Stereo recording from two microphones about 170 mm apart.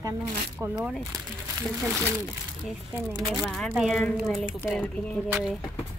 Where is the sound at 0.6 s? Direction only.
15° right (ahead or behind).